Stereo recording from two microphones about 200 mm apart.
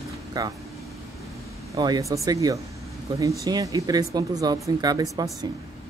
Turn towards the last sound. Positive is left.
turn(degrees=-20)  # may be behind; listen again after turning